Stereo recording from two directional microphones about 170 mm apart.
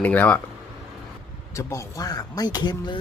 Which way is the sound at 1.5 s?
20° left (ahead or behind).